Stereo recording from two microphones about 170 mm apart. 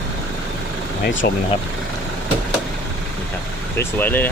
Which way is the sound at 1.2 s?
70° left (ahead or behind).